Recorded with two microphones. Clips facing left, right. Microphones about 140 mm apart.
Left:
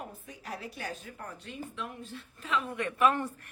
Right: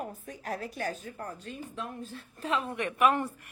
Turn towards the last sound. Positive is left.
turn(degrees=-15)  # may be behind; listen again after turning